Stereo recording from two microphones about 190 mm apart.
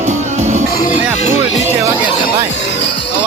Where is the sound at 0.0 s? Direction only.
35° right (ahead or behind).